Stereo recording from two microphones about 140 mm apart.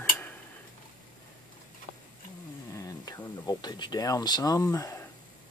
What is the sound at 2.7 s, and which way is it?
Speech, 25° left (ahead or behind).